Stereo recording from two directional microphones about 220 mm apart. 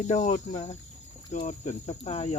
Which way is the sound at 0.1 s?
35° left (ahead or behind).